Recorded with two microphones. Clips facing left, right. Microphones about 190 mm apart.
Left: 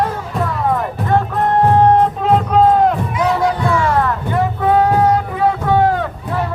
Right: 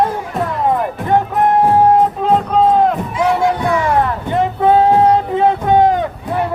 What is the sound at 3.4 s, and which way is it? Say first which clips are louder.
Music: right 1 dB; 20° right (ahead or behind).